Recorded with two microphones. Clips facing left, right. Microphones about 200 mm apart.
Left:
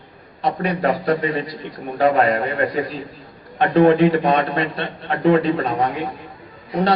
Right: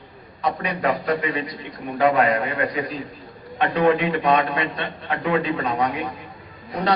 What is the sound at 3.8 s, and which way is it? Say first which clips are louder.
A man's voice: left 4 dB; 35° left (ahead or behind).